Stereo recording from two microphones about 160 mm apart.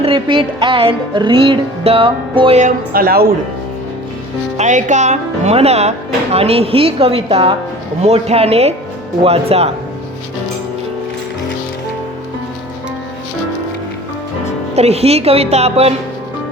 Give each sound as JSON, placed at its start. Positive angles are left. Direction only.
{"t": 0.0, "sound": "music", "side_deg": -30}
{"t": 2.6, "sound": "speech", "side_deg": -60}
{"t": 4.5, "sound": "speech", "side_deg": -50}
{"t": 6.3, "sound": "music", "side_deg": -40}
{"t": 14.8, "sound": "music", "side_deg": -40}